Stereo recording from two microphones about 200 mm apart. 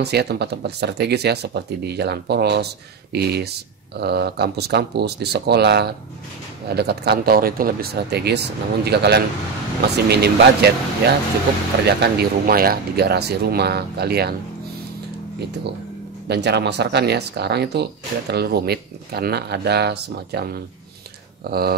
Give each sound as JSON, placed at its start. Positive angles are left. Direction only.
{"t": 0.0, "sound": "speech", "side_deg": -55}
{"t": 16.3, "sound": "speech", "side_deg": -60}